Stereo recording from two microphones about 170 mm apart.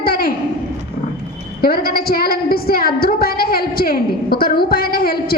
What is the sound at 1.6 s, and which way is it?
A woman's voice, 60° left (ahead or behind).